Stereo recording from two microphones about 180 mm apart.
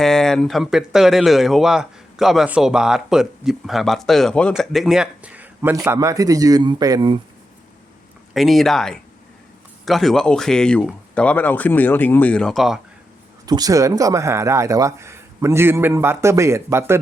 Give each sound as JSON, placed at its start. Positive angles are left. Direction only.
{"t": 0.0, "sound": "speech", "side_deg": 5}
{"t": 8.3, "sound": "speech", "side_deg": 0}
{"t": 13.4, "sound": "speech", "side_deg": -20}